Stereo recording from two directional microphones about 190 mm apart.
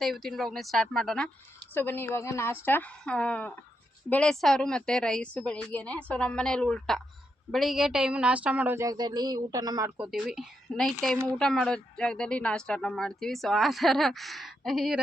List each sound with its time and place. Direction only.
0.0 s a woman's voice: centre (ahead or behind); by 9.9 s 20° right (ahead or behind)
10.0 s speech: centre (ahead or behind)